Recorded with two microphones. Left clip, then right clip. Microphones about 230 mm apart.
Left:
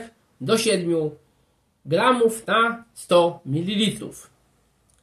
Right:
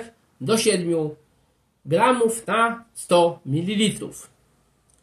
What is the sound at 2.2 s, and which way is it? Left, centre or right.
Speech, left.